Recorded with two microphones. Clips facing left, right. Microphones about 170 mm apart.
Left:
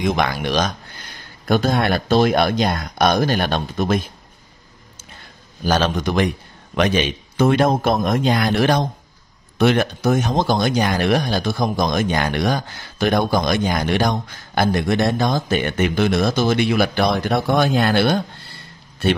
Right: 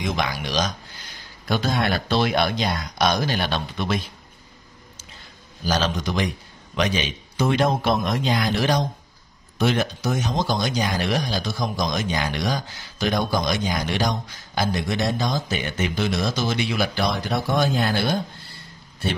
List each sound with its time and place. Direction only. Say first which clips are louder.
0.0 s speech: left 6 dB; 55° left (ahead or behind)
5.6 s speech: left 5 dB; 55° left (ahead or behind)